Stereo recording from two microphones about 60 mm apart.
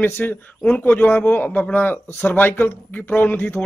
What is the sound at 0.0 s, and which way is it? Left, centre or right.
Speech, left.